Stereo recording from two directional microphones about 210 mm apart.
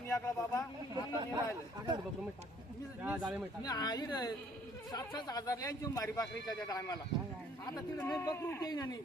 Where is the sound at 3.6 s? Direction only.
20° left (ahead or behind).